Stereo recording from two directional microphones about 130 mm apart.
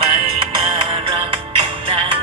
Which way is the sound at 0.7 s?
40° right (ahead or behind).